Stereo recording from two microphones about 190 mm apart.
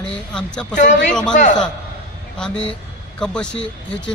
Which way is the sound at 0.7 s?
40° left (ahead or behind).